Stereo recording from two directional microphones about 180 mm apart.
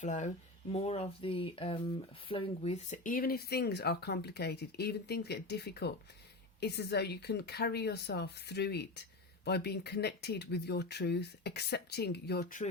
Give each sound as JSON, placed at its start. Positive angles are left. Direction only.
{"t": 0.0, "sound": "speech", "side_deg": 40}